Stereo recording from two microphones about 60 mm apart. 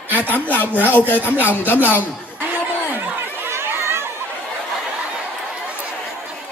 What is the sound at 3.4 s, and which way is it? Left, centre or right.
Chatter, right.